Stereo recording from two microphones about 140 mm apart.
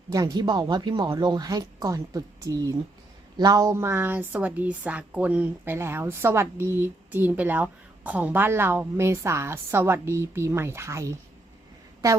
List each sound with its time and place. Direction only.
0.1 s a woman's voice: 25° right (ahead or behind)